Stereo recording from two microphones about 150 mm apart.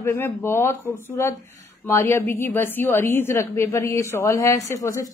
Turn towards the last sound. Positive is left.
turn(degrees=20)  # may be behind; listen again after turning